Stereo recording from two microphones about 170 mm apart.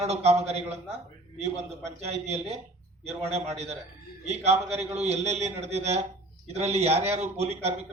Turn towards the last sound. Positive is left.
turn(degrees=-40)  # may be behind; listen again after turning